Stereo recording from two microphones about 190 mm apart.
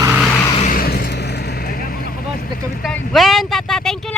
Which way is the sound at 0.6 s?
50° left (ahead or behind).